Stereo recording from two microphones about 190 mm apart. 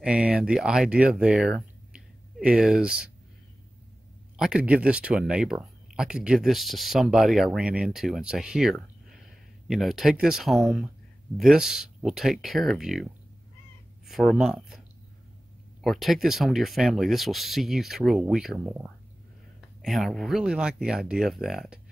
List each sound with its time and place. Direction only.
0.0 s speech: 5° right (ahead or behind)
4.4 s speech: 5° right (ahead or behind)
14.0 s speech: centre (ahead or behind)
15.8 s speech: centre (ahead or behind)
19.8 s speech: centre (ahead or behind)